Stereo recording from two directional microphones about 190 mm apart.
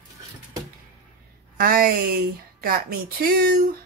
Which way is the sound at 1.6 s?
50° right (ahead or behind).